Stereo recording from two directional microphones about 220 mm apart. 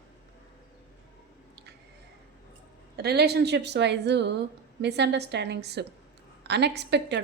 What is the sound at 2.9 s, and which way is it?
Speech, 45° right (ahead or behind).